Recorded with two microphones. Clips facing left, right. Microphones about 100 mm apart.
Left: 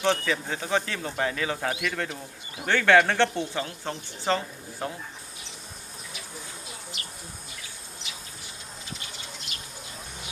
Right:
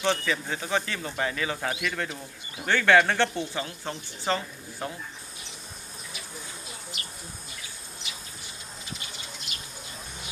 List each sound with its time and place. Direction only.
0.0 s speech: centre (ahead or behind)
1.9 s speech: 10° right (ahead or behind)
6.9 s bee: 5° right (ahead or behind)
8.9 s bird: 10° right (ahead or behind)